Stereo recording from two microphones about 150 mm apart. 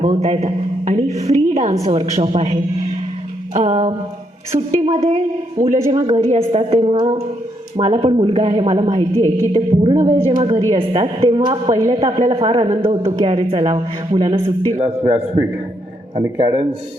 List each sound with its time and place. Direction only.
0.0 s a man's voice: 45° right (ahead or behind)
9.1 s a woman's voice: 25° left (ahead or behind)
9.5 s a woman's voice: 40° right (ahead or behind)
11.9 s a woman's voice: 45° right (ahead or behind)
14.8 s speech: 15° right (ahead or behind)
16.1 s speech: 30° right (ahead or behind)